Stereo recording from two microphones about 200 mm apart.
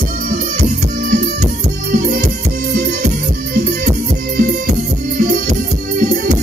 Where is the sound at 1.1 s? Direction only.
40° right (ahead or behind).